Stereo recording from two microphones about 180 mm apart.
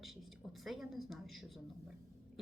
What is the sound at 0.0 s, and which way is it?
A woman's voice, centre (ahead or behind).